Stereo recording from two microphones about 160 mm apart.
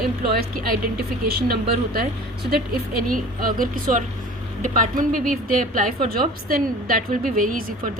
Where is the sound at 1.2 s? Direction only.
70° right (ahead or behind).